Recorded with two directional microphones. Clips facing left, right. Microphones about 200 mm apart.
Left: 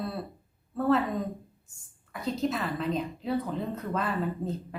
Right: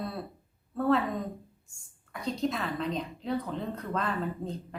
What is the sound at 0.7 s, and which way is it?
A woman's voice, centre (ahead or behind).